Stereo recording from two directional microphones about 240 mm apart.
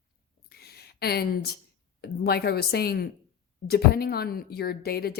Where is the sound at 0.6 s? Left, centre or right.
Left.